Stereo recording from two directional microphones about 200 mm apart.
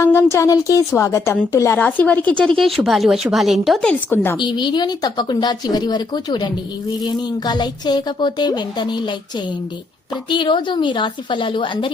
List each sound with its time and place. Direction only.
0.0 s a woman's voice: 15° left (ahead or behind)
4.4 s speech: 20° left (ahead or behind)
10.2 s speech: 25° left (ahead or behind)